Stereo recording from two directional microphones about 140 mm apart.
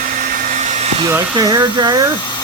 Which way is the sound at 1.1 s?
25° right (ahead or behind).